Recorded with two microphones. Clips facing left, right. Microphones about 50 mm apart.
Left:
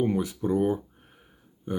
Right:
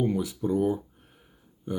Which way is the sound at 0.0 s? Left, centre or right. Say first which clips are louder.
Left 1 dB; left.